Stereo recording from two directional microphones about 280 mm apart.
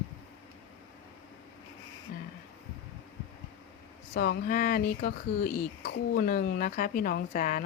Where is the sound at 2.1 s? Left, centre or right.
Left.